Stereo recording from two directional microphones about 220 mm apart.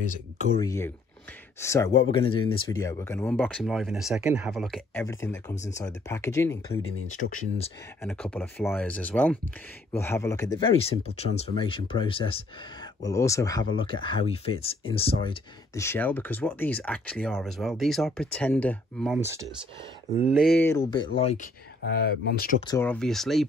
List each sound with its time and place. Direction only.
0.6 s speech: 15° left (ahead or behind)
2.0 s speech: 25° left (ahead or behind); by 5.0 s centre (ahead or behind)
5.0 s speech: 10° left (ahead or behind)
7.2 s speech: 30° left (ahead or behind)
8.0 s speech: 5° left (ahead or behind)
10.8 s speech: 25° left (ahead or behind)
13.0 s speech: 15° left (ahead or behind)
15.7 s speech: 10° left (ahead or behind)
19.1 s speech: 10° right (ahead or behind)
20.2 s speech: centre (ahead or behind)
20.6 s speech: 15° left (ahead or behind)
21.8 s speech: 45° left (ahead or behind)
22.7 s speech: 10° left (ahead or behind)